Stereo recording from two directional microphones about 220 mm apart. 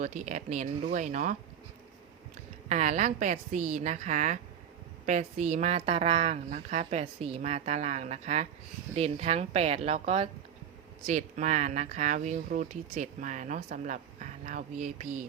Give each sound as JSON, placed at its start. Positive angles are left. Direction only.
{"t": 0.0, "sound": "speech", "side_deg": -35}
{"t": 2.6, "sound": "a woman's voice", "side_deg": -30}